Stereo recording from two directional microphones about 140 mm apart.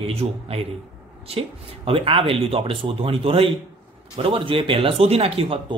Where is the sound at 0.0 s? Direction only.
45° right (ahead or behind).